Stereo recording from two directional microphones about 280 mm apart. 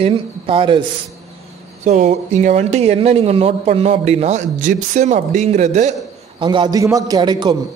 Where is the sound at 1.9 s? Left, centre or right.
Right.